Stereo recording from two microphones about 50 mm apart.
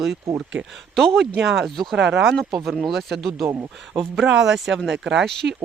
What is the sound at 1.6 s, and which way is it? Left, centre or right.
Speech, centre.